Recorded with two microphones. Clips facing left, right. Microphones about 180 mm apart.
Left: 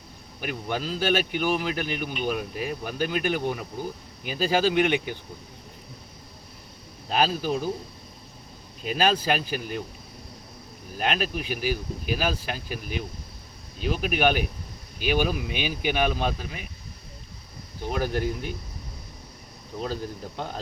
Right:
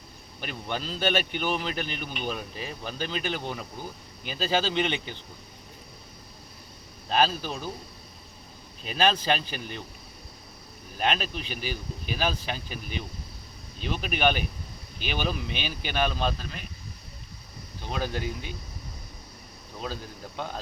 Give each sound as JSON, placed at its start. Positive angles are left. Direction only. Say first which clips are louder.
{"t": 0.4, "sound": "speech", "louder": "left 4 dB", "side_deg": 10}
{"t": 7.1, "sound": "speech", "louder": "left 2 dB", "side_deg": 10}
{"t": 9.0, "sound": "speech", "louder": "left 1 dB", "side_deg": 10}
{"t": 10.9, "sound": "speech", "louder": "left 1 dB", "side_deg": 5}
{"t": 14.0, "sound": "speech", "louder": "left 2 dB", "side_deg": 10}
{"t": 17.7, "sound": "speech", "louder": "left 4 dB", "side_deg": 15}
{"t": 19.9, "sound": "speech", "louder": "left 6 dB", "side_deg": 15}